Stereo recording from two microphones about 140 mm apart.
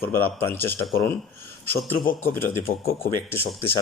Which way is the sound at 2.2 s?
15° left (ahead or behind).